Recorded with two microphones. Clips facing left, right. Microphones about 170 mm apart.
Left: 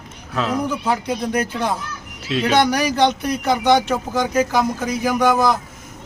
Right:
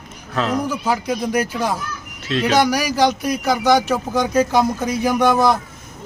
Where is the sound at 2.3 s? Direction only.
5° left (ahead or behind).